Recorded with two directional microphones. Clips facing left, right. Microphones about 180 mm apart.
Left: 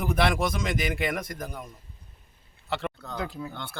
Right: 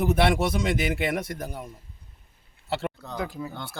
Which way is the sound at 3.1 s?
5° right (ahead or behind).